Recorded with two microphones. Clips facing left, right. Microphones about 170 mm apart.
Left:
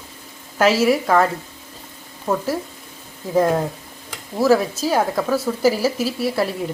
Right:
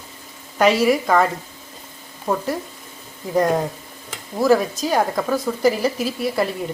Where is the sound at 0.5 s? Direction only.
5° left (ahead or behind).